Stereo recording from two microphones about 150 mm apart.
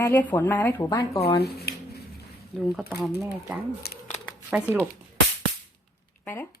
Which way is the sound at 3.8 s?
90° left.